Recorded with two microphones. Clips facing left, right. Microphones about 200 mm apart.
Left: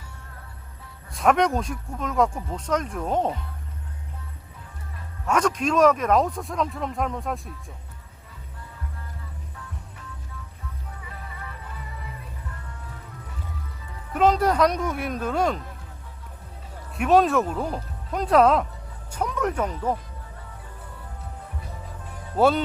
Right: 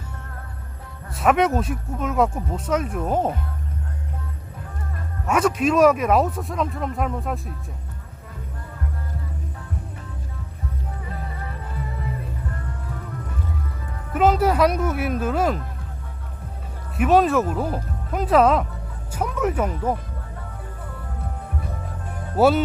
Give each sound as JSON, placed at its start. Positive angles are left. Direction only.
{"t": 1.1, "sound": "speech", "side_deg": -5}
{"t": 5.2, "sound": "speech", "side_deg": -5}
{"t": 11.0, "sound": "music", "side_deg": -40}
{"t": 13.1, "sound": "music", "side_deg": -55}
{"t": 14.1, "sound": "speech", "side_deg": -5}
{"t": 17.0, "sound": "speech", "side_deg": 0}
{"t": 22.1, "sound": "music", "side_deg": -55}
{"t": 22.4, "sound": "speech", "side_deg": -5}